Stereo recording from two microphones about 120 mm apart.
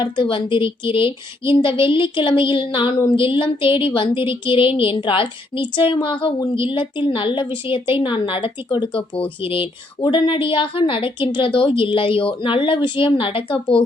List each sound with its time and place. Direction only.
0.0 s a woman's voice: 45° left (ahead or behind)